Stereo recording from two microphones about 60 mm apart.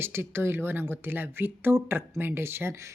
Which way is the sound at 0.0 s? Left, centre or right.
Right.